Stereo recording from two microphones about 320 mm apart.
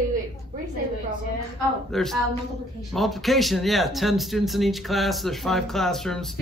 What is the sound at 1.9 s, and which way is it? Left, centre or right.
Speech, centre.